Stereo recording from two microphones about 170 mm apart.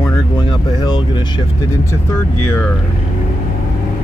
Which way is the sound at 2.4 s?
10° left (ahead or behind).